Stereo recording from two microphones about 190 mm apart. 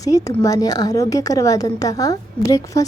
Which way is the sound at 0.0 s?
20° left (ahead or behind).